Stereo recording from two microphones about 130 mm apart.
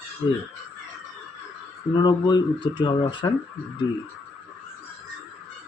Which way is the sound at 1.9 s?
35° left (ahead or behind).